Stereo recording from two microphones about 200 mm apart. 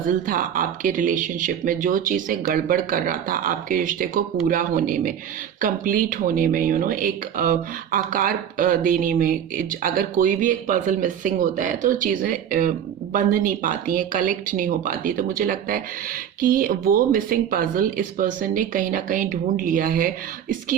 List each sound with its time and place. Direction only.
0.1 s speech: 45° right (ahead or behind)